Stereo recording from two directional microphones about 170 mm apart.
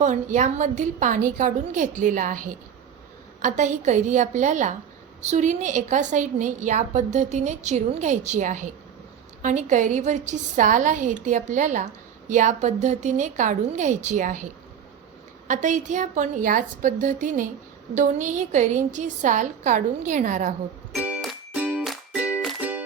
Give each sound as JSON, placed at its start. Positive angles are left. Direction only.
{"t": 0.0, "sound": "a woman's voice", "side_deg": -45}
{"t": 15.4, "sound": "a woman's voice", "side_deg": -45}
{"t": 20.9, "sound": "music", "side_deg": -5}